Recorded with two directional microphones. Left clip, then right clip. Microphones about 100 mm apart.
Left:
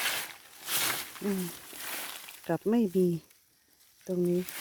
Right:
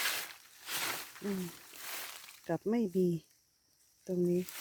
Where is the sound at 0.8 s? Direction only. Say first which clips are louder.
Left 6 dB; 80° left.